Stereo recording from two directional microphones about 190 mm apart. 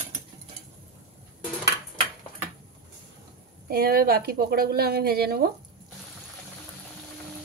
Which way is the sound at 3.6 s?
55° right (ahead or behind).